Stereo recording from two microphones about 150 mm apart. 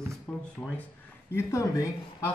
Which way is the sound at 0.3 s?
Centre (ahead or behind).